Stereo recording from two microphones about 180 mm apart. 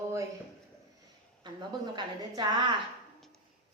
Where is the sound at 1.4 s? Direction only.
25° right (ahead or behind).